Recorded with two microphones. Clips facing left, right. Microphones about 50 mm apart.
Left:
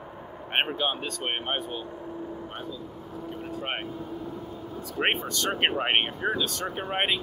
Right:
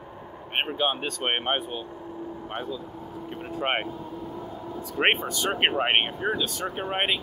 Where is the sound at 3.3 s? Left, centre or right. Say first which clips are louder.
Right 3 dB; right.